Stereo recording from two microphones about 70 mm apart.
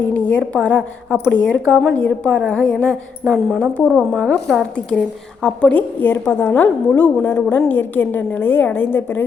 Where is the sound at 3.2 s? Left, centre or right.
Centre.